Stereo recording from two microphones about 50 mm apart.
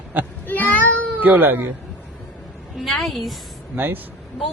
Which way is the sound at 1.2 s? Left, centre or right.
Right.